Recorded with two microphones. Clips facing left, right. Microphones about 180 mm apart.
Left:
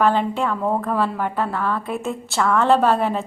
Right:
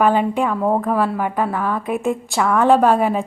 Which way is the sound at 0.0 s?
10° right (ahead or behind).